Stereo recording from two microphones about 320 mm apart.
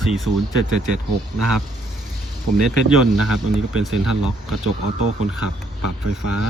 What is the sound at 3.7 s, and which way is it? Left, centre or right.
Speech, centre.